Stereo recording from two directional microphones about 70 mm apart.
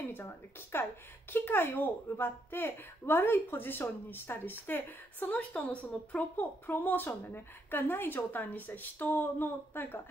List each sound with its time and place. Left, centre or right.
0.1 s a woman's voice: left